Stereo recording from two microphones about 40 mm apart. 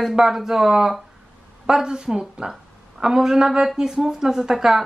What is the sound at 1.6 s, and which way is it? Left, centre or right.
A woman's voice, centre.